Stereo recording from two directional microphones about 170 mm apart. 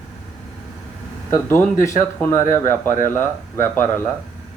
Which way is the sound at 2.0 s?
15° left (ahead or behind).